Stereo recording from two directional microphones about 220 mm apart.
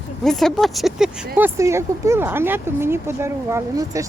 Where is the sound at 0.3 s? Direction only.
Centre (ahead or behind).